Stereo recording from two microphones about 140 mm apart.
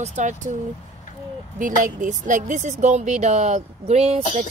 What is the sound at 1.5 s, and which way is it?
A woman's voice, 70° right (ahead or behind).